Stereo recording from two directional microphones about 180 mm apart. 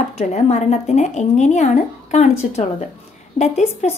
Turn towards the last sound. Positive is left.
turn(degrees=35)  # may be behind; listen again after turning